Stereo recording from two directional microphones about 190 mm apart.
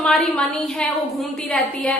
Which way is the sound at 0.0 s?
5° left (ahead or behind).